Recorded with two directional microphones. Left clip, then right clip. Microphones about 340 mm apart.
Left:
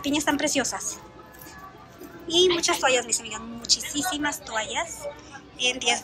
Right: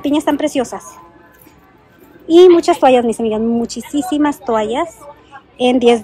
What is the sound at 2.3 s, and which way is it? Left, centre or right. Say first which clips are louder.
A woman's voice: right 14 dB; centre.